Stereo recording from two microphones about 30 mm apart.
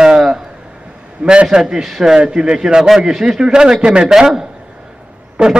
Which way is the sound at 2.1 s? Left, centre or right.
Right.